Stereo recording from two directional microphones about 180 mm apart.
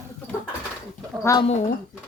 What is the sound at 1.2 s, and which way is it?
Speech, 15° left (ahead or behind).